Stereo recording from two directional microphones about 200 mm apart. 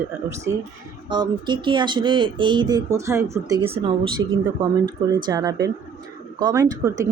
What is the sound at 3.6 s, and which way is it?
Speech, 30° right (ahead or behind).